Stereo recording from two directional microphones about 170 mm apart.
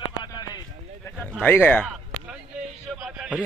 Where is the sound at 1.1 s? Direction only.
10° left (ahead or behind).